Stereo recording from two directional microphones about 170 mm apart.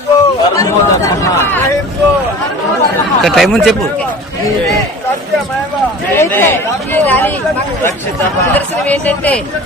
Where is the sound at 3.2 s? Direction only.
Centre (ahead or behind).